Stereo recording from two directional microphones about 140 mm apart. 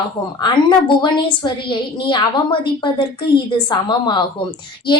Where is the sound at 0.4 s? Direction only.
35° left (ahead or behind).